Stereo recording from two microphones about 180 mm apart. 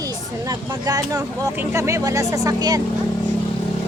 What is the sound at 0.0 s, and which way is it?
Speech, 20° right (ahead or behind).